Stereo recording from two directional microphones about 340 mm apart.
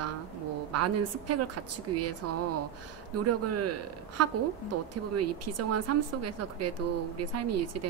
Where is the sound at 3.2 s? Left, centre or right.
Right.